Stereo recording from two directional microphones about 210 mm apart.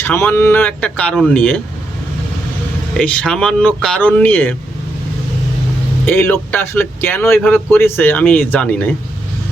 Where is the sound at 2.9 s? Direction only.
5° left (ahead or behind).